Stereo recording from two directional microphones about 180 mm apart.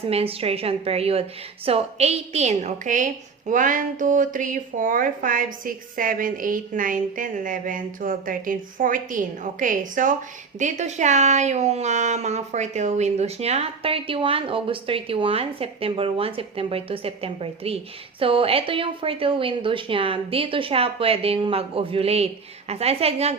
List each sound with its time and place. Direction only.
0.1 s a woman's voice: 35° right (ahead or behind)